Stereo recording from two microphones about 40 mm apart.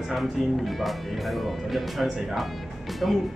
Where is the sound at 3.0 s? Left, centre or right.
Centre.